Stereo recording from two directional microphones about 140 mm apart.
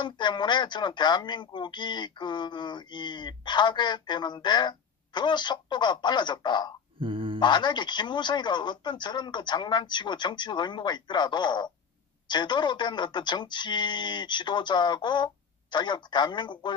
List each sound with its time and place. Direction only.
0.0 s speech: 35° left (ahead or behind)
7.0 s mantra: 40° right (ahead or behind)
7.3 s speech: 35° left (ahead or behind)